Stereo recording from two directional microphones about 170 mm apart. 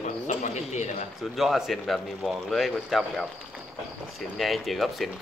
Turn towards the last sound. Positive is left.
turn(degrees=0)  # may be behind; listen again after turning